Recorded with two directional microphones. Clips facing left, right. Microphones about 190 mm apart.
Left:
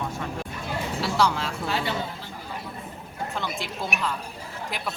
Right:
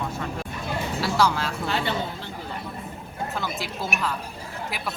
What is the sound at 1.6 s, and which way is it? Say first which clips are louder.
Speech: right 1 dB; 60° right (ahead or behind).